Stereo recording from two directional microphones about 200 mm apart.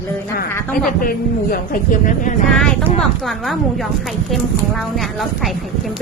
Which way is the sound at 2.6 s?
5° left (ahead or behind).